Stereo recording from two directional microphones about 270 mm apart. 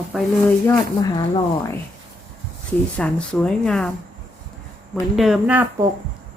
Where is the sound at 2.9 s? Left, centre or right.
Centre.